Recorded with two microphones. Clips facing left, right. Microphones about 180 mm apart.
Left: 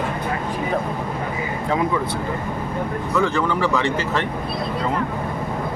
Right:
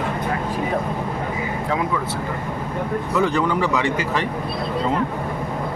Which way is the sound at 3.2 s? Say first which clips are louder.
Even; 15° right (ahead or behind).